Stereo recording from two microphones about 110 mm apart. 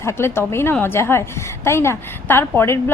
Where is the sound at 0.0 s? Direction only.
25° left (ahead or behind).